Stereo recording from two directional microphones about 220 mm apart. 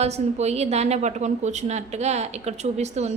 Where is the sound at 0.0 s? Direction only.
30° right (ahead or behind).